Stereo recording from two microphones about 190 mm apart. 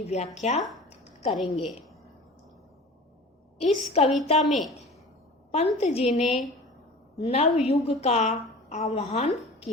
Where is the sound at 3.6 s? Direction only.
30° left (ahead or behind).